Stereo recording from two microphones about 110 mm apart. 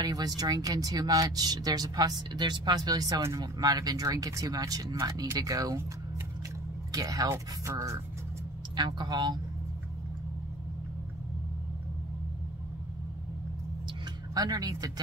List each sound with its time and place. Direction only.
0.0 s speech: 35° right (ahead or behind)
6.9 s speech: 35° right (ahead or behind)
8.7 s speech: 40° right (ahead or behind)
14.3 s speech: 35° right (ahead or behind)